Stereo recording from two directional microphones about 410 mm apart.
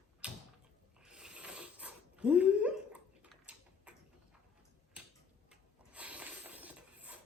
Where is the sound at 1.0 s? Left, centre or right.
Centre.